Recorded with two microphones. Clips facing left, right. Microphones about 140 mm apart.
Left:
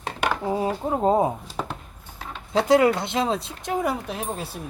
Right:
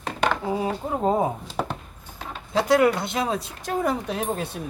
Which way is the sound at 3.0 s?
25° left (ahead or behind).